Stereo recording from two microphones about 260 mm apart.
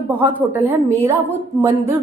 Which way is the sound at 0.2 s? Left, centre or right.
Centre.